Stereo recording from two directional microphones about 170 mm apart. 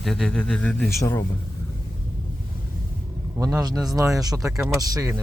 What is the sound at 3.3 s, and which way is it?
Speech, 20° right (ahead or behind).